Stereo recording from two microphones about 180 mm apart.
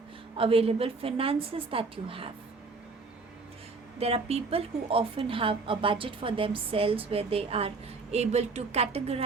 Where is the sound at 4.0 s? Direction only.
35° right (ahead or behind).